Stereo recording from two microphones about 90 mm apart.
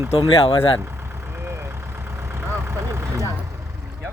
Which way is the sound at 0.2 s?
90° left.